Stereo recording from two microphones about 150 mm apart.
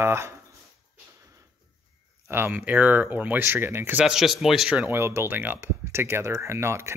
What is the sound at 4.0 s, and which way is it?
Speech, centre (ahead or behind).